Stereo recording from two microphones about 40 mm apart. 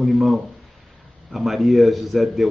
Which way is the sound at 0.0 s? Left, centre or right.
Centre.